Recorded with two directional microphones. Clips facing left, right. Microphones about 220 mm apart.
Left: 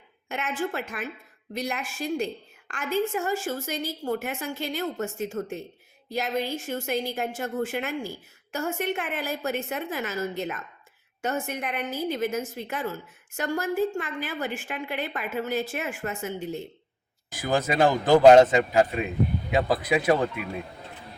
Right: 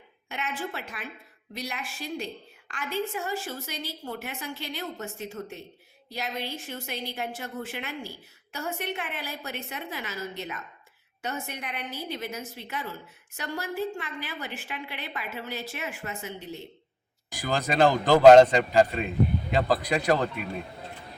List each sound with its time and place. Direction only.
0.3 s a woman's voice: 50° left (ahead or behind)
17.6 s a man's voice: 10° left (ahead or behind)